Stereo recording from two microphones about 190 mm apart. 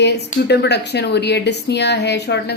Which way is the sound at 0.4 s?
60° left (ahead or behind).